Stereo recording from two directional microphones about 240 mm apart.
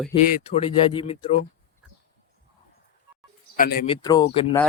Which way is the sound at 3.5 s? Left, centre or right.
Left.